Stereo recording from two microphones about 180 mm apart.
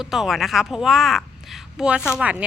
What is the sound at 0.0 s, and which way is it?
A woman's voice, centre (ahead or behind).